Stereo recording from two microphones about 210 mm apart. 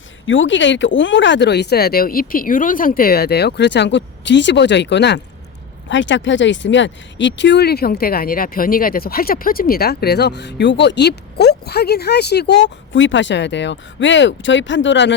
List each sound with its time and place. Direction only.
0.3 s speech: 65° left (ahead or behind)
12.9 s speech: 65° left (ahead or behind)